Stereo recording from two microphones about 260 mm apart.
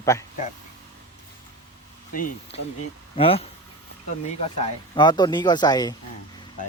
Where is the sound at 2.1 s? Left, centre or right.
Left.